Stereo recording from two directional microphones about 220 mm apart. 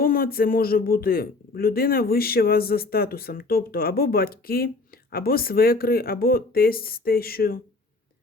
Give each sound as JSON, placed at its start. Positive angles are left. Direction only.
{"t": 0.0, "sound": "a man's voice", "side_deg": 40}